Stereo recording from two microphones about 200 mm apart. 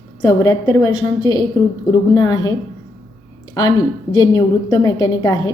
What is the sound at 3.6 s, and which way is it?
A woman's voice, 20° left (ahead or behind).